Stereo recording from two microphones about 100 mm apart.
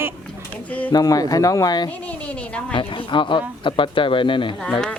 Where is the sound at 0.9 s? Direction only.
40° left (ahead or behind).